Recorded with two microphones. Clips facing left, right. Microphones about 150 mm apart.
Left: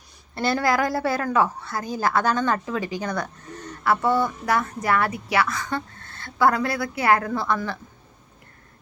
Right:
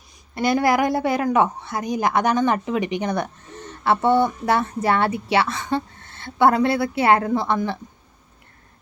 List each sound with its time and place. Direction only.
0.3 s a woman's voice: 15° right (ahead or behind)